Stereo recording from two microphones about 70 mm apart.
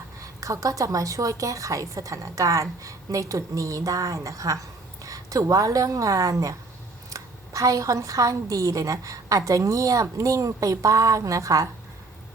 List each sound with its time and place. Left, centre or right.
0.3 s a woman's voice: right